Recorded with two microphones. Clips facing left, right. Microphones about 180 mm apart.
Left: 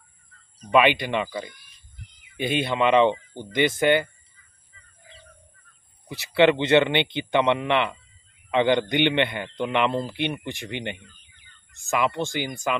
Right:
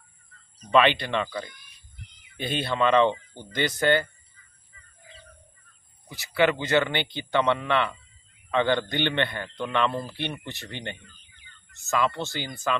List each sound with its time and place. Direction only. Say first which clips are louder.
0.6 s a man's voice: left 2 dB; 10° left (ahead or behind)
6.0 s a man's voice: left 5 dB; 25° left (ahead or behind)